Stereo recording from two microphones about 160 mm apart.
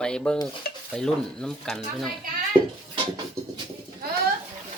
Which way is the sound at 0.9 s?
5° left (ahead or behind).